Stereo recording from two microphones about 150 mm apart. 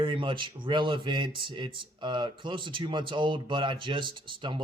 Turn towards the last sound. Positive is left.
turn(degrees=-35)  # may be behind; listen again after turning